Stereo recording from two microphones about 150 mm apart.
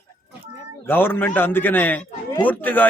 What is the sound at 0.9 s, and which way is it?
A man's voice, 15° left (ahead or behind).